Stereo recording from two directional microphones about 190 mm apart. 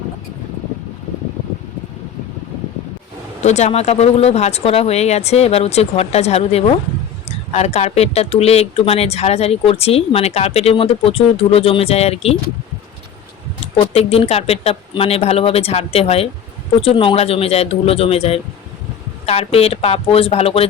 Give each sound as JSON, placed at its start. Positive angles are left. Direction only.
{"t": 3.4, "sound": "speech", "side_deg": 35}
{"t": 13.7, "sound": "speech", "side_deg": 35}